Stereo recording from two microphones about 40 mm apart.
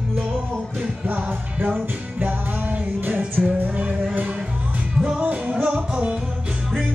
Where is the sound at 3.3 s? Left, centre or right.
Right.